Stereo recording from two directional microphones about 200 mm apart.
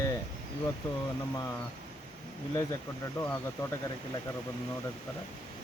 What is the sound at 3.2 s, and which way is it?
Speech, 10° left (ahead or behind).